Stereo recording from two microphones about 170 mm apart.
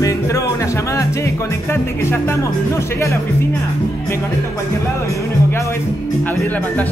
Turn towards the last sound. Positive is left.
turn(degrees=10)  # may be behind; listen again after turning